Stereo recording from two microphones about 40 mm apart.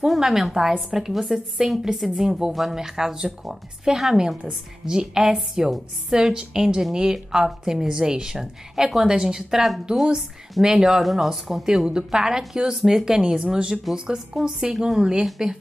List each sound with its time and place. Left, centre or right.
0.0 s a woman's voice: centre